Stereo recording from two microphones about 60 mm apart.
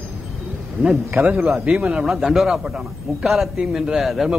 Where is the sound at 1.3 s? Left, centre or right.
Centre.